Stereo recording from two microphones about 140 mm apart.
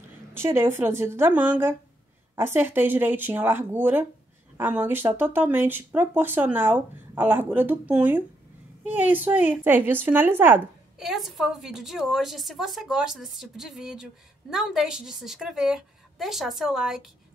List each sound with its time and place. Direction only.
0.3 s speech: 20° right (ahead or behind)
11.0 s a woman's voice: centre (ahead or behind)